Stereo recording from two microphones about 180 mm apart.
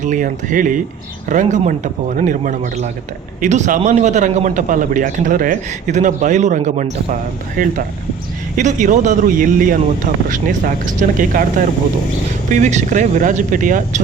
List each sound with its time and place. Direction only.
0.0 s a man's voice: 45° right (ahead or behind)
11.2 s a man's voice: 50° right (ahead or behind)